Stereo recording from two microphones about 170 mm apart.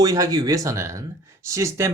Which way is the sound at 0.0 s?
20° right (ahead or behind).